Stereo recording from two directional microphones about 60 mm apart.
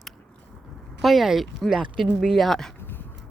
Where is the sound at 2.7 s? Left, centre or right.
Left.